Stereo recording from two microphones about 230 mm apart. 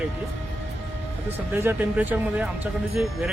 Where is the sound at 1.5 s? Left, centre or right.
Centre.